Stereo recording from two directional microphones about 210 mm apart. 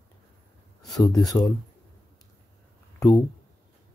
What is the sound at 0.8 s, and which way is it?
Speech, 15° left (ahead or behind).